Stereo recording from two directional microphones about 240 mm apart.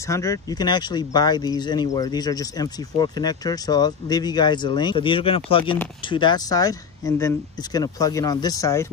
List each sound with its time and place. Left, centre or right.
0.0 s speech: centre